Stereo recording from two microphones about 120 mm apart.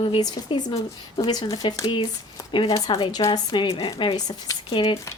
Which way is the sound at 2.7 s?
30° left (ahead or behind).